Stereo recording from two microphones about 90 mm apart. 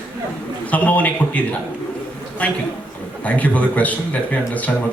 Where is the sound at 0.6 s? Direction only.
15° left (ahead or behind).